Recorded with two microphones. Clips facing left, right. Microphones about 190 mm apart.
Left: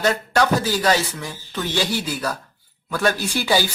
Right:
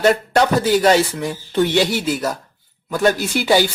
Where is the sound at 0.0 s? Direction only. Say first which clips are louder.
Right 4 dB; 25° right (ahead or behind).